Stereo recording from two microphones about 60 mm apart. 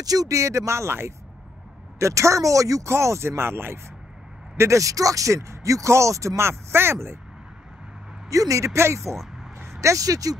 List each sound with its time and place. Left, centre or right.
0.0 s speech: right
2.9 s speech: right
4.6 s speech: right
8.3 s speech: right
9.1 s a sound: centre
9.8 s speech: right